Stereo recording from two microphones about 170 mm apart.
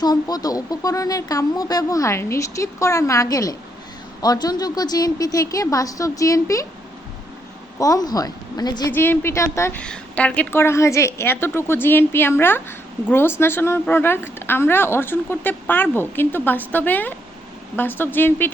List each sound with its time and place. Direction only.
0.0 s speech: 25° left (ahead or behind)
7.8 s speech: 20° left (ahead or behind)
8.9 s a woman's voice: 15° left (ahead or behind)